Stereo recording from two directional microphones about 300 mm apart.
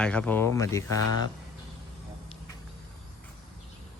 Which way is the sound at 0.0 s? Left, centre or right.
Centre.